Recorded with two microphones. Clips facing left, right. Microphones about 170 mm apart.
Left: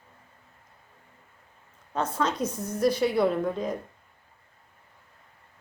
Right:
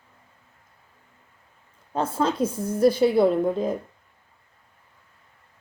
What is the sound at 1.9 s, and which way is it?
A woman's voice, 30° right (ahead or behind).